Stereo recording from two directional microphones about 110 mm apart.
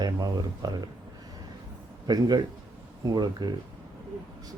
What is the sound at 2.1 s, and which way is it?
Speech, 35° right (ahead or behind).